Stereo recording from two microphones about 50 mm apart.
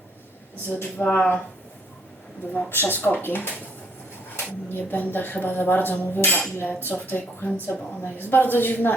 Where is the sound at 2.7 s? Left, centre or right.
Left.